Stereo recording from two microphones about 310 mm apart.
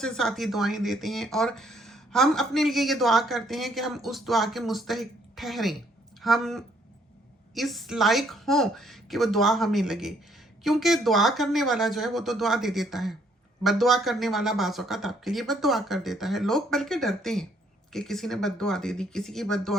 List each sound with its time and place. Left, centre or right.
0.0 s speech: centre